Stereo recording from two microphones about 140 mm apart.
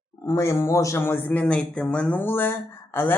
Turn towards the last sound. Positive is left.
turn(degrees=15)  # may be behind; listen again after turning